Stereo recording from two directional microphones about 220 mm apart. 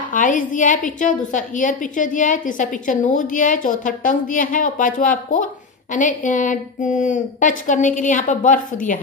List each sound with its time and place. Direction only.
0.1 s a woman's voice: 35° left (ahead or behind)